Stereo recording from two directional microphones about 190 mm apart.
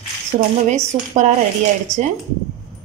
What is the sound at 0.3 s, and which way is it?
Speech, 45° right (ahead or behind).